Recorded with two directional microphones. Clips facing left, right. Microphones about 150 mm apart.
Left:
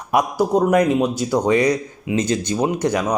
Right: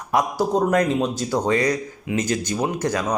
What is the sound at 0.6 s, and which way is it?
Speech, 15° left (ahead or behind).